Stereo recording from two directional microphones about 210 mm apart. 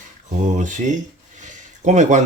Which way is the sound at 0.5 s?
35° right (ahead or behind).